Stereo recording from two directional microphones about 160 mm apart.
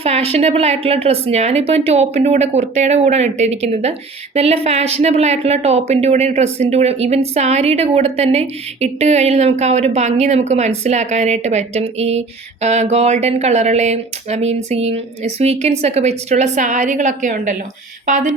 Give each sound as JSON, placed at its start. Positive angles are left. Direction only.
{"t": 0.0, "sound": "a woman's voice", "side_deg": -40}